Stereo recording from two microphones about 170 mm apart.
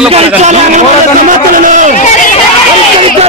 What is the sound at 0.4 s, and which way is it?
A man's voice, 45° right (ahead or behind).